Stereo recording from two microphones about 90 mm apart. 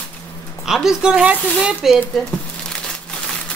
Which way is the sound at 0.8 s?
10° right (ahead or behind).